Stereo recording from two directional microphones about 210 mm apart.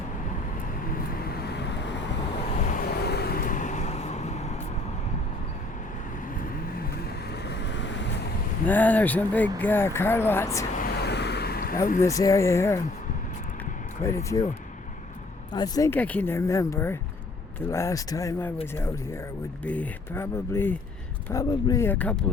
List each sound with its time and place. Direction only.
0.9 s vehicle: 50° left (ahead or behind)
2.6 s vehicle: 45° left (ahead or behind)
7.7 s vehicle: 60° left (ahead or behind)
8.6 s speech: 10° left (ahead or behind)
10.8 s vehicle: 50° left (ahead or behind)
11.9 s speech: 15° left (ahead or behind)
14.0 s speech: 15° left (ahead or behind)
15.5 s speech: 20° left (ahead or behind)